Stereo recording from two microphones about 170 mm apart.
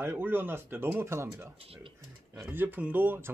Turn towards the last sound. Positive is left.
turn(degrees=-10)  # may be behind; listen again after turning